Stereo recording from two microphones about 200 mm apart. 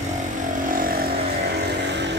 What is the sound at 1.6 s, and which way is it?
Vehicle, 60° right (ahead or behind).